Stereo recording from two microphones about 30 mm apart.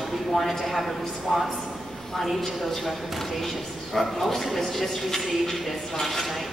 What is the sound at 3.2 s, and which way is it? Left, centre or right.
A man's voice, centre.